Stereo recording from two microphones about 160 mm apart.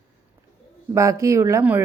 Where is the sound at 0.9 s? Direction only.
20° right (ahead or behind).